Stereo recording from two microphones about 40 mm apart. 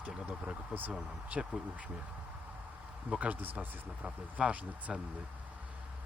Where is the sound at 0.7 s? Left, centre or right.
Right.